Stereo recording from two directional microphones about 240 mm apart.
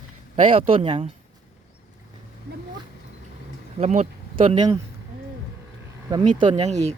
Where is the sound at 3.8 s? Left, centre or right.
Right.